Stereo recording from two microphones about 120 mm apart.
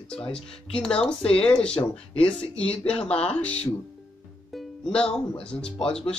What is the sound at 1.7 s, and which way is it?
Speech, 50° left (ahead or behind).